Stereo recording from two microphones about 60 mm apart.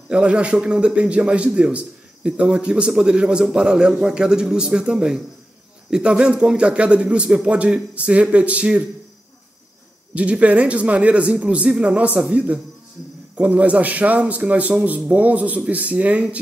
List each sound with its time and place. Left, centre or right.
0.1 s a man's voice: centre
10.1 s a man's voice: right